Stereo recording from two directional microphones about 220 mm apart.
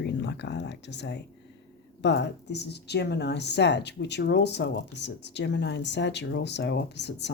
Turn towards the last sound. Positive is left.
turn(degrees=50)  # may be behind; listen again after turning